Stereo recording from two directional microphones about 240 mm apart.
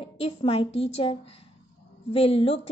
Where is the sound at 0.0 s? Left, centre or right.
Left.